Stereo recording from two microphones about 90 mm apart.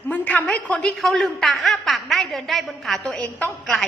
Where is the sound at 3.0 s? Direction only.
15° left (ahead or behind).